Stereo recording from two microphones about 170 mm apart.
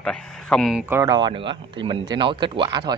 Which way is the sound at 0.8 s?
15° right (ahead or behind).